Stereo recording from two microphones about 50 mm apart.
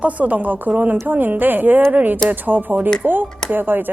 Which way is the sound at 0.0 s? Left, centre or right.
Right.